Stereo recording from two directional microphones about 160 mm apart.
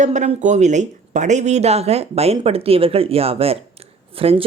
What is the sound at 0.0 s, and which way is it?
Speech, 45° right (ahead or behind).